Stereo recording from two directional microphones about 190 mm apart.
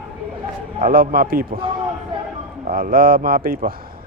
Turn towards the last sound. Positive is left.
turn(degrees=-50)  # may be behind; listen again after turning